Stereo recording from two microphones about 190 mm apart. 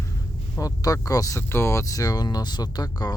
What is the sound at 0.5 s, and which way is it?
Speech, 20° left (ahead or behind).